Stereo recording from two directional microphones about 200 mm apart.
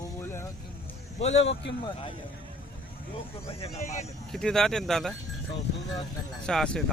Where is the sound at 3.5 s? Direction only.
30° left (ahead or behind).